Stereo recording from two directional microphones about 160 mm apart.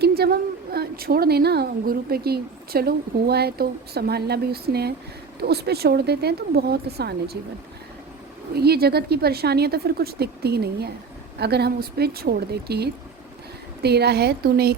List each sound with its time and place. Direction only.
0.0 s a woman's voice: 75° right (ahead or behind)
8.5 s a woman's voice: 85° right